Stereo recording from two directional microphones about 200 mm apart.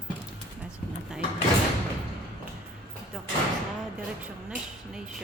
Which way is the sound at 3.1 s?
Centre (ahead or behind).